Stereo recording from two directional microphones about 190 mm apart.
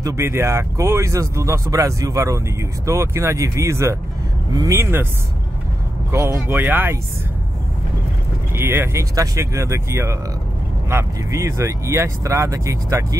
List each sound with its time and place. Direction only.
0.0 s speech: 15° right (ahead or behind)
6.1 s speech: 15° right (ahead or behind)
8.5 s speech: 10° right (ahead or behind)